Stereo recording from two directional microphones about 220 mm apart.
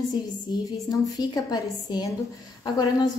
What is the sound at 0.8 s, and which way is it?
A woman's voice, 15° left (ahead or behind).